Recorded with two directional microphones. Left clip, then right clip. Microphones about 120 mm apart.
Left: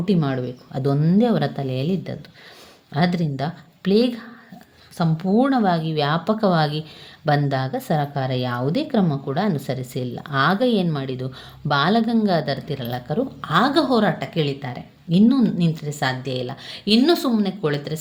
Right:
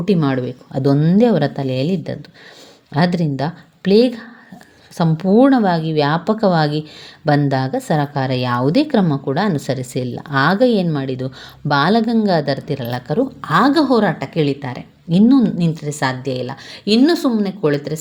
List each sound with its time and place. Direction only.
0.0 s speech: 45° right (ahead or behind)